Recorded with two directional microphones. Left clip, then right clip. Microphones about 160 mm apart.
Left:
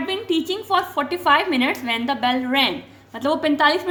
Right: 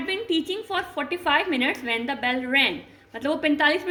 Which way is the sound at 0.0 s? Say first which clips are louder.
Left 3 dB; 35° left (ahead or behind).